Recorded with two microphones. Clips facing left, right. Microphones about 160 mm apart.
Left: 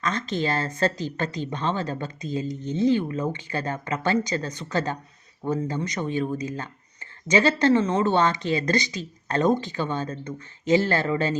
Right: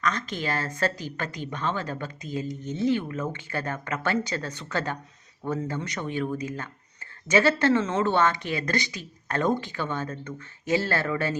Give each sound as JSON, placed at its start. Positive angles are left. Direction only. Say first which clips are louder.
{"t": 0.0, "sound": "speech", "louder": "left 3 dB", "side_deg": 25}